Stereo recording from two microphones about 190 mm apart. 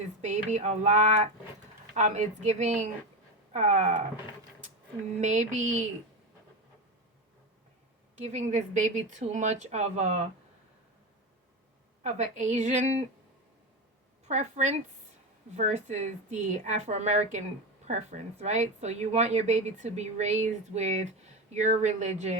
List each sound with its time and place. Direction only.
0.2 s a woman's voice: 40° right (ahead or behind)
5.2 s a woman's voice: 40° right (ahead or behind)
8.1 s a woman's voice: 35° right (ahead or behind)
12.0 s a woman's voice: 40° right (ahead or behind)
14.3 s a woman's voice: 35° right (ahead or behind)